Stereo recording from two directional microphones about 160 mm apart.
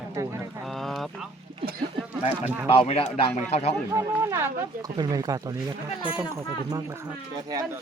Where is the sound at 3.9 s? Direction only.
15° right (ahead or behind).